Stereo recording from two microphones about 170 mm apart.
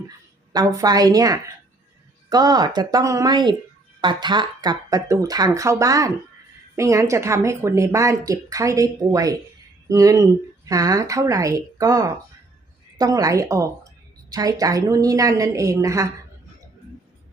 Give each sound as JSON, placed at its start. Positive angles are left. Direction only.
{"t": 0.5, "sound": "speech", "side_deg": -20}